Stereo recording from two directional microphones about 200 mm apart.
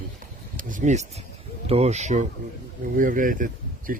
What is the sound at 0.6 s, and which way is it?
Speech, 40° right (ahead or behind).